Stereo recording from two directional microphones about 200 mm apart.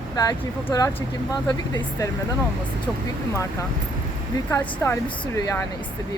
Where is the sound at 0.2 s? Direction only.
20° left (ahead or behind).